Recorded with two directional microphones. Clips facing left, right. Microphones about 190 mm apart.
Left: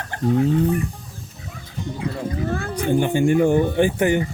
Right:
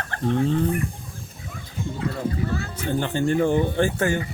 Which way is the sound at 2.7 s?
15° left (ahead or behind).